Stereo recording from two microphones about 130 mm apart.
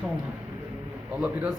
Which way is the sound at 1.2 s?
10° right (ahead or behind).